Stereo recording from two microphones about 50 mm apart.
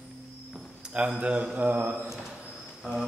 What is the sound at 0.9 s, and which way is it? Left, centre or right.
Speech, right.